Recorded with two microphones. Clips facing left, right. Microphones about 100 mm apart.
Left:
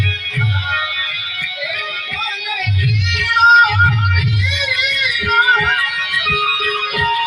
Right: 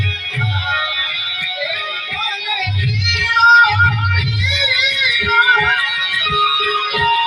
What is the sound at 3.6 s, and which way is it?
Music, centre (ahead or behind).